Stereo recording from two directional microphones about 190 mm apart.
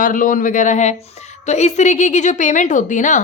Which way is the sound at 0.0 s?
45° left (ahead or behind).